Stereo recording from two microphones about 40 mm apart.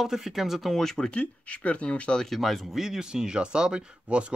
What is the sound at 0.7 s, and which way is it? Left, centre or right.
Speech, centre.